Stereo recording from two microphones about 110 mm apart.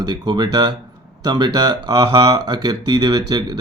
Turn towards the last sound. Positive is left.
turn(degrees=-40)  # may be behind; listen again after turning